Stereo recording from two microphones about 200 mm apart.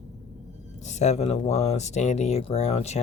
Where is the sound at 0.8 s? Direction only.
35° left (ahead or behind).